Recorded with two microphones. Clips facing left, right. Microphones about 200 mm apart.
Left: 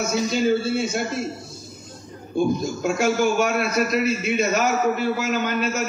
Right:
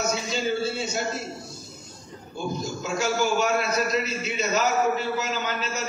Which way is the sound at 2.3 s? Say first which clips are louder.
Left 9 dB; 55° left (ahead or behind).